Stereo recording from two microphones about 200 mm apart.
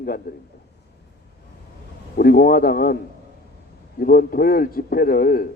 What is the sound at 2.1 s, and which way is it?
Speech, 45° left (ahead or behind).